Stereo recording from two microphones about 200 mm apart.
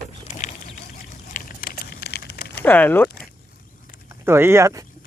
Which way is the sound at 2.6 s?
10° left (ahead or behind).